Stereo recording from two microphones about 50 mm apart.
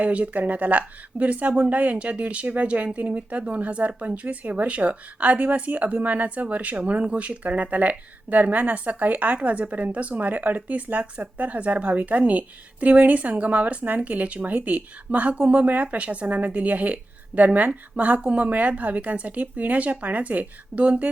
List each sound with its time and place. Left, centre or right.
0.0 s speech: right